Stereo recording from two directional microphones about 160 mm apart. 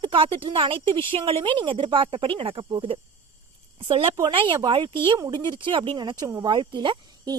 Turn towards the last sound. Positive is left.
turn(degrees=-30)  # may be behind; listen again after turning